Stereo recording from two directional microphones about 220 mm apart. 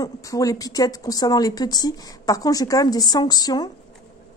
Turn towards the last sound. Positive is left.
turn(degrees=15)  # may be behind; listen again after turning